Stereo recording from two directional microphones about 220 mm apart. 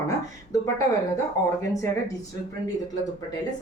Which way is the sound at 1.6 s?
15° left (ahead or behind).